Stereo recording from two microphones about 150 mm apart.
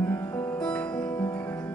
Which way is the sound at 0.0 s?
15° left (ahead or behind).